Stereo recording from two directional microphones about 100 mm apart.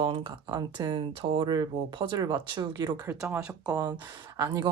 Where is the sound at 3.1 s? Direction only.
25° right (ahead or behind); by 4.7 s 45° right (ahead or behind).